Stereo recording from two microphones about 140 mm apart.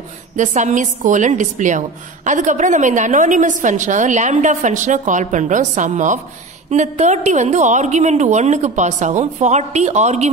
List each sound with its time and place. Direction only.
0.4 s a woman's voice: 60° right (ahead or behind)